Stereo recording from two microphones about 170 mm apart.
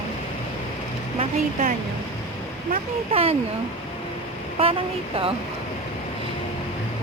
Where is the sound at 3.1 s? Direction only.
35° right (ahead or behind).